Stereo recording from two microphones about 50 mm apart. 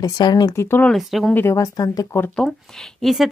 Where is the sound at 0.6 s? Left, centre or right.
Left.